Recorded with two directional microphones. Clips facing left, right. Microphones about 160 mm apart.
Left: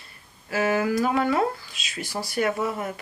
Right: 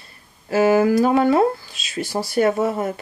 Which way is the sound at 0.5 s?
30° right (ahead or behind).